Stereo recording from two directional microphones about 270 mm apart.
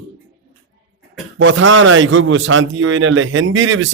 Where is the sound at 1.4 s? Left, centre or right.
Right.